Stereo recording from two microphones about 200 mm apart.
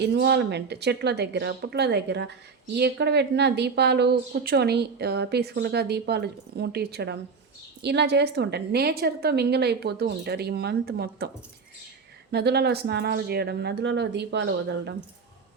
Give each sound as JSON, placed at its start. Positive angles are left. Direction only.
{"t": 0.0, "sound": "a woman's voice", "side_deg": -55}
{"t": 12.3, "sound": "a woman's voice", "side_deg": -55}